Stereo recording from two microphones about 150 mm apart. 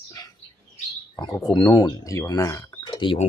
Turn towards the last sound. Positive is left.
turn(degrees=30)  # may be behind; listen again after turning